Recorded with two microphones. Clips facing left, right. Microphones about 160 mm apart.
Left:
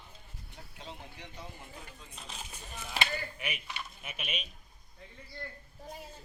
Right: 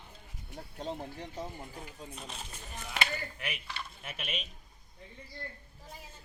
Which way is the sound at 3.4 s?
15° left (ahead or behind).